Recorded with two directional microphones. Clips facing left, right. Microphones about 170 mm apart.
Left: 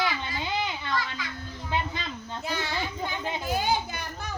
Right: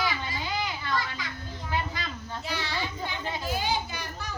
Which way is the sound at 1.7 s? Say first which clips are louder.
Left 1 dB; 20° left (ahead or behind).